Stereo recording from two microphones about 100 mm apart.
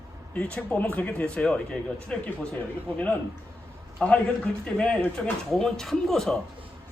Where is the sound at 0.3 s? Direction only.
10° left (ahead or behind).